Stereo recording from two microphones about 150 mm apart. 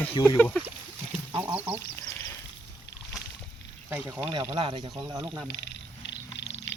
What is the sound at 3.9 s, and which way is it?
Speech, 15° right (ahead or behind).